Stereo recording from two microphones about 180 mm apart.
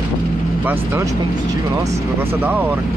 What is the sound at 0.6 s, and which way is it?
Speech, 10° right (ahead or behind).